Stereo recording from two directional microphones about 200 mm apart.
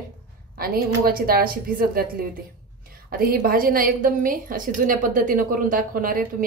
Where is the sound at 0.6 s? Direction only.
50° right (ahead or behind).